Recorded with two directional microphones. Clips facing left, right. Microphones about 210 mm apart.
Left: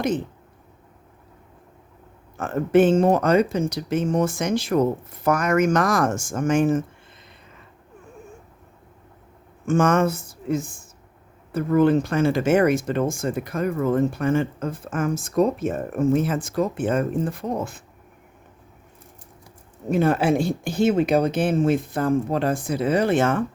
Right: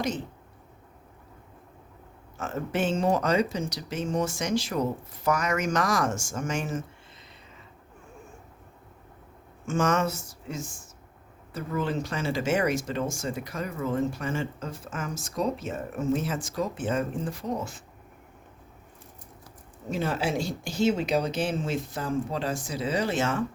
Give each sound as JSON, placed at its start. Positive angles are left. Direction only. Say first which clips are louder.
{"t": 2.4, "sound": "speech", "louder": "left 11 dB", "side_deg": 55}
{"t": 9.6, "sound": "speech", "louder": "left 6 dB", "side_deg": 55}
{"t": 19.9, "sound": "speech", "louder": "left 9 dB", "side_deg": 55}